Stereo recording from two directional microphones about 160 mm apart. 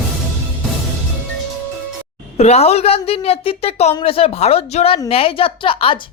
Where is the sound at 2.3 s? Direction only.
40° left (ahead or behind).